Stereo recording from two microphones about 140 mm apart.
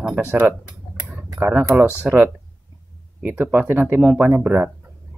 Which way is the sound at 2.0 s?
15° right (ahead or behind).